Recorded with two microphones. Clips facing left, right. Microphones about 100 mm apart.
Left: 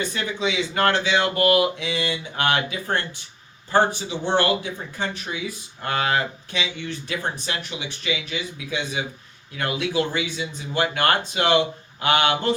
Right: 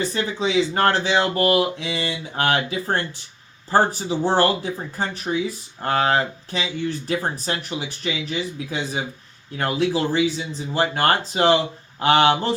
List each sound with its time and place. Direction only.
0.1 s speech: 35° right (ahead or behind)